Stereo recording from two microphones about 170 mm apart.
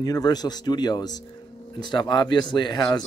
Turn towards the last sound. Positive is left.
turn(degrees=25)  # may be behind; listen again after turning